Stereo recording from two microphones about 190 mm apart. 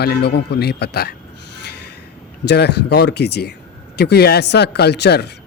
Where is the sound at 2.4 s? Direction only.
60° left (ahead or behind).